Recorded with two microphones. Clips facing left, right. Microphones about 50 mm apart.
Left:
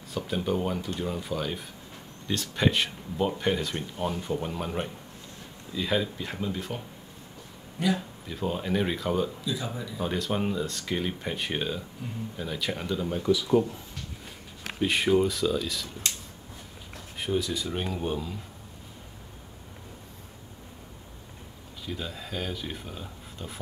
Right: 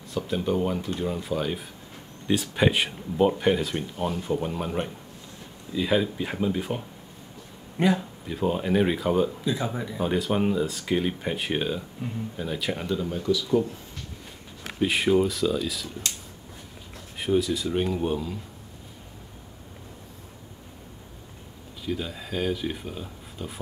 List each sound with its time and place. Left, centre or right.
0.1 s speech: centre
7.8 s speech: right
8.3 s speech: centre
9.4 s speech: right
9.9 s speech: centre
12.0 s speech: right
12.4 s speech: centre
13.1 s speech: centre
14.8 s speech: centre
17.2 s speech: centre
21.8 s speech: centre